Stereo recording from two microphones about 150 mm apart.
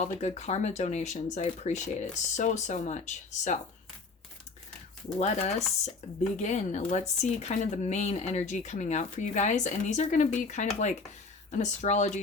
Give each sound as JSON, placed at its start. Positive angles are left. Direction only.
{"t": 0.0, "sound": "speech", "side_deg": 50}
{"t": 5.2, "sound": "speech", "side_deg": 50}